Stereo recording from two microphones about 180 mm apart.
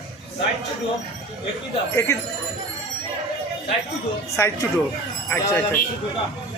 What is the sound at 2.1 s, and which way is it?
Speech, 15° left (ahead or behind).